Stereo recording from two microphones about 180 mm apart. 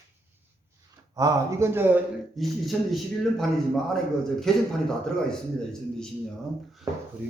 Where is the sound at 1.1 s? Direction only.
20° right (ahead or behind).